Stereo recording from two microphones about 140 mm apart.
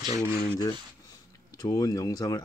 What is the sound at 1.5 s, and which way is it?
Speech, 25° left (ahead or behind).